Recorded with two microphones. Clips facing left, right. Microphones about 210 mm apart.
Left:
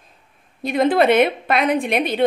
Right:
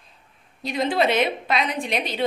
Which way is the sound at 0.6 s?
55° left (ahead or behind).